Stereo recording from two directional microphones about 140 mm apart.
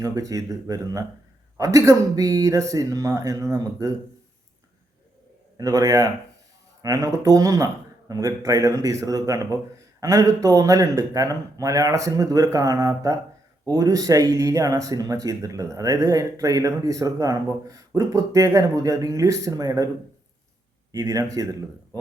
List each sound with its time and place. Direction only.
0.0 s speech: 25° right (ahead or behind)
5.5 s speech: 25° right (ahead or behind)
20.9 s speech: 25° right (ahead or behind)